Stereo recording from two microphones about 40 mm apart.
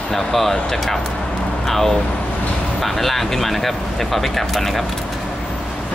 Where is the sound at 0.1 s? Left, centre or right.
Centre.